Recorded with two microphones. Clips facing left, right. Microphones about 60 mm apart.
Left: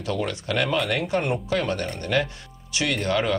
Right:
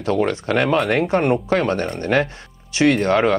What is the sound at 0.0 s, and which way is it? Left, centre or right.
Speech, right.